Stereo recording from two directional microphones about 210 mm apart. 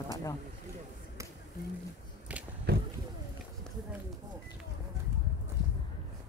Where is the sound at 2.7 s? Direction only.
50° right (ahead or behind).